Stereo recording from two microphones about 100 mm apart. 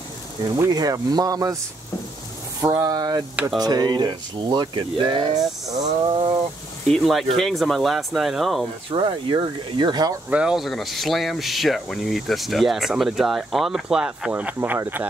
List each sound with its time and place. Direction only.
0.6 s speech: 40° right (ahead or behind)
2.6 s speech: 35° right (ahead or behind); by 6.3 s 50° right (ahead or behind)
6.9 s speech: centre (ahead or behind)
8.9 s speech: 55° right (ahead or behind)
10.3 s speech: 5° right (ahead or behind)
14.3 s speech: 20° right (ahead or behind)